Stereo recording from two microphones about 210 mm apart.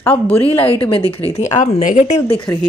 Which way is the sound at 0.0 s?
5° left (ahead or behind).